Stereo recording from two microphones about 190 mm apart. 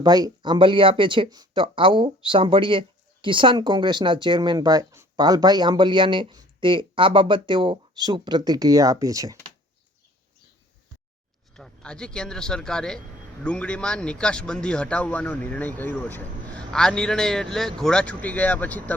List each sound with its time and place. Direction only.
0.0 s speech: 20° right (ahead or behind)
11.5 s speech: 5° left (ahead or behind)